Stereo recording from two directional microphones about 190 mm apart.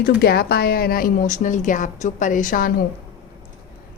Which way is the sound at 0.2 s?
55° left (ahead or behind).